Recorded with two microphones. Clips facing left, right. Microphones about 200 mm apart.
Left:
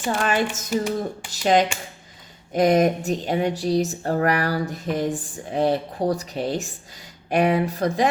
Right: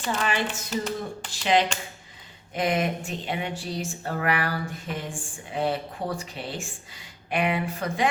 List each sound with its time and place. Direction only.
0.1 s speech: 45° left (ahead or behind)
0.7 s speech: 10° left (ahead or behind)
1.3 s speech: 45° left (ahead or behind)